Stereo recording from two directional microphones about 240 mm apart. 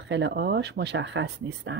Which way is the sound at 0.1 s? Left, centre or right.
Right.